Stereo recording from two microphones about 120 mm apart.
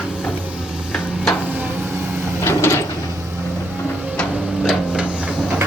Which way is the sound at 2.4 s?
20° left (ahead or behind).